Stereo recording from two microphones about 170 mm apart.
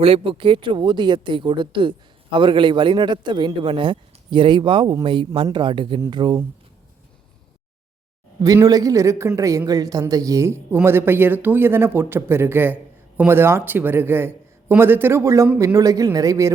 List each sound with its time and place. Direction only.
0.0 s speech: 35° right (ahead or behind)
8.4 s speech: 20° right (ahead or behind)